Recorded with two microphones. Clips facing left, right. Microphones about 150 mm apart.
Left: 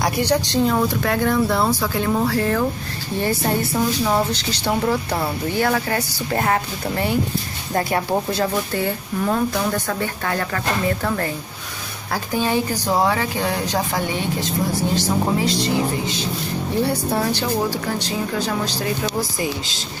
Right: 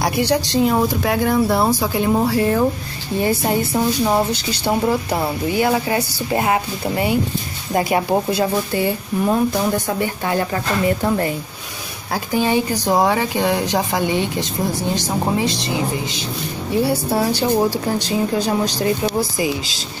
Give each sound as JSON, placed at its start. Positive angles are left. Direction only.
{"t": 0.0, "sound": "a woman's voice", "side_deg": -10}
{"t": 16.8, "sound": "a woman's voice", "side_deg": -10}
{"t": 17.5, "sound": "speech", "side_deg": -25}